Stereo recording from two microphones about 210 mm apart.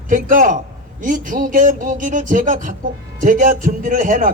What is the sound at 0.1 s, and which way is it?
Speech, 40° right (ahead or behind).